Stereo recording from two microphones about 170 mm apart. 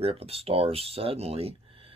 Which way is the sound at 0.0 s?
35° right (ahead or behind).